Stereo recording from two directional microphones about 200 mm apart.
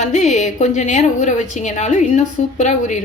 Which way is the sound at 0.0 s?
35° left (ahead or behind).